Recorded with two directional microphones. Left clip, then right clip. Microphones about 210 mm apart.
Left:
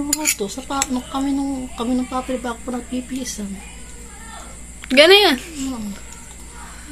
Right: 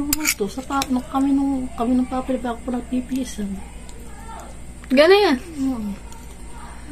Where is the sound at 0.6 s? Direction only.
25° right (ahead or behind).